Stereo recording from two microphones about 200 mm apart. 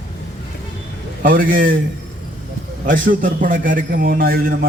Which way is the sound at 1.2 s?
45° right (ahead or behind).